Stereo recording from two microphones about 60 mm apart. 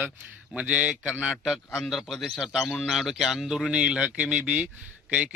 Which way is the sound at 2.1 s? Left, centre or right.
Centre.